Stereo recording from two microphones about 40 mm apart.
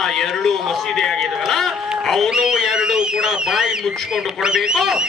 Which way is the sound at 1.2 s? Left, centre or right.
Centre.